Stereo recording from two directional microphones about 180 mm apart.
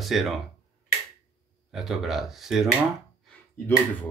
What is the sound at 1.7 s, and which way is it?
A man's voice, centre (ahead or behind).